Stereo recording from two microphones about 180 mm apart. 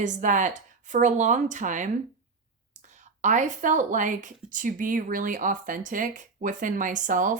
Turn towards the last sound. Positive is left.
turn(degrees=-45)  # may be behind; listen again after turning